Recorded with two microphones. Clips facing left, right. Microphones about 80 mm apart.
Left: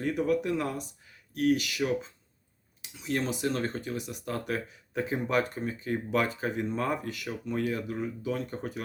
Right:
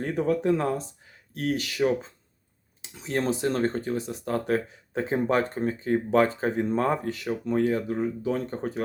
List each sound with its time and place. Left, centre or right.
0.0 s speech: right